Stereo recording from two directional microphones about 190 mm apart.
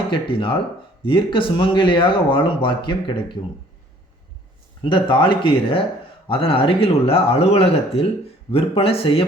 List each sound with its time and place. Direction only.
0.1 s speech: 25° left (ahead or behind)
4.8 s speech: 25° left (ahead or behind)